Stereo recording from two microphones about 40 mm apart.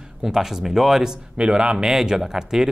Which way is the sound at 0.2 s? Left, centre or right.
Centre.